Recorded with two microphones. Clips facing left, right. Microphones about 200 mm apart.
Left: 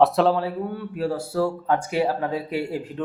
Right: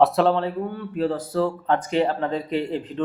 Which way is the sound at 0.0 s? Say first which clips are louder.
Even; centre (ahead or behind).